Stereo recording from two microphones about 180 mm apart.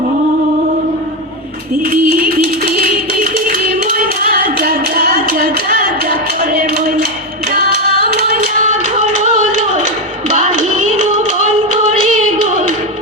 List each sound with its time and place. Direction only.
1.8 s music: 50° right (ahead or behind)
3.9 s clapping: 55° right (ahead or behind)
8.1 s hands: 55° right (ahead or behind)
8.8 s music: 40° right (ahead or behind)
10.3 s a sound: 40° right (ahead or behind)
11.7 s singing: 40° right (ahead or behind)